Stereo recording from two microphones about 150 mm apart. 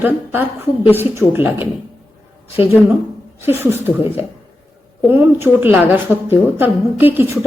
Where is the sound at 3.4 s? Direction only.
15° right (ahead or behind).